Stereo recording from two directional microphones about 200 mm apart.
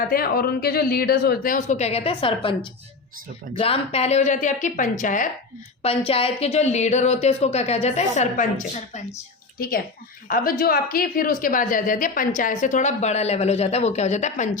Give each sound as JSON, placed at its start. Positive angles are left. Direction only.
{"t": 0.1, "sound": "a man's voice", "side_deg": 50}
{"t": 3.6, "sound": "a woman's voice", "side_deg": 30}
{"t": 5.8, "sound": "a woman's voice", "side_deg": 30}
{"t": 9.6, "sound": "a woman's voice", "side_deg": 50}